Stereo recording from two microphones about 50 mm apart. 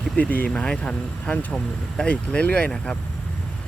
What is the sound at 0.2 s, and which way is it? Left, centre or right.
Speech, left.